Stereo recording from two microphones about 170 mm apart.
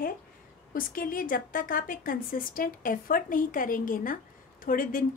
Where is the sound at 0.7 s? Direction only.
55° left (ahead or behind).